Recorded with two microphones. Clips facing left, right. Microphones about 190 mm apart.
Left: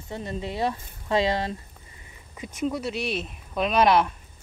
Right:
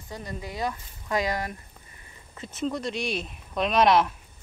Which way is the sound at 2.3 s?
10° left (ahead or behind).